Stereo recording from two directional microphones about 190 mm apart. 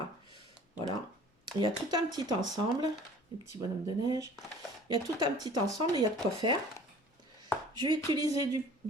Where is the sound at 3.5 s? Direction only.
20° right (ahead or behind).